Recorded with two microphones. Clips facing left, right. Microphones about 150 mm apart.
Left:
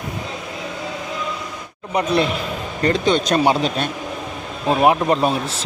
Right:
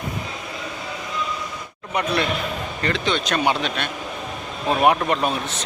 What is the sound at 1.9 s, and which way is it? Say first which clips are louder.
Speech: left 4 dB; 30° left (ahead or behind).